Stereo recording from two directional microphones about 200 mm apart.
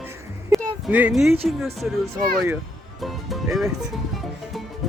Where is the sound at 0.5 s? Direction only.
5° right (ahead or behind).